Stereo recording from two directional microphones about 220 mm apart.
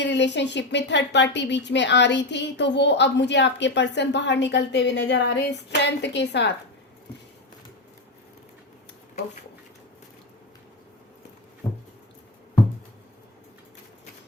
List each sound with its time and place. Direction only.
0.0 s speech: 55° left (ahead or behind)